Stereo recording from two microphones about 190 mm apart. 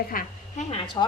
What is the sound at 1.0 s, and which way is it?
Speech, 20° left (ahead or behind).